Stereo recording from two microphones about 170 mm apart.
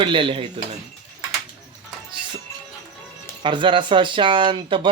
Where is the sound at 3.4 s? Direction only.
30° right (ahead or behind).